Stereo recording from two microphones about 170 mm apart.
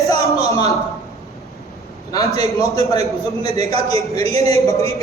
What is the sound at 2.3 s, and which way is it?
Speech, 35° right (ahead or behind).